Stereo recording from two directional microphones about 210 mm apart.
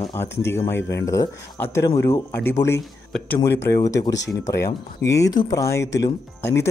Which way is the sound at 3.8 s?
15° left (ahead or behind).